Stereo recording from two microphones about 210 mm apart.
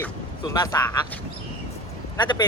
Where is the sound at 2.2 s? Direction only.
20° left (ahead or behind).